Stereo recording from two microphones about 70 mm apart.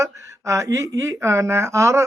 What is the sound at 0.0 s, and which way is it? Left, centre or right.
Speech, right.